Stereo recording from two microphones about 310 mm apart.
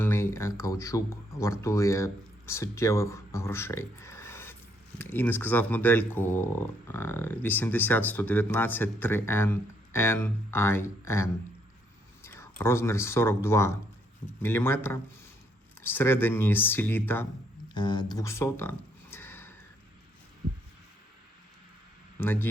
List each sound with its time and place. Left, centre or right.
0.0 s speech: centre
19.1 s a sound: centre
22.2 s speech: centre